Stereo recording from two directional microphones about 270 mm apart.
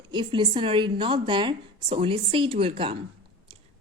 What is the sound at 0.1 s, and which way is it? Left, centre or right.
Speech, centre.